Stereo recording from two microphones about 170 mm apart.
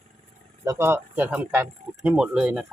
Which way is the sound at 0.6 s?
15° right (ahead or behind).